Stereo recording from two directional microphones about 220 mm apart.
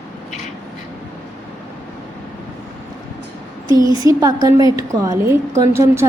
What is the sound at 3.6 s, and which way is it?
A woman's voice, 15° right (ahead or behind).